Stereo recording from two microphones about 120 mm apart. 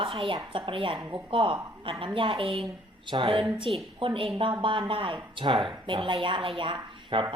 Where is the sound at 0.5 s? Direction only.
45° right (ahead or behind).